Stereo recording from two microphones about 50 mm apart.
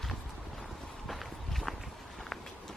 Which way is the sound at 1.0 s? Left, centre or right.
Centre.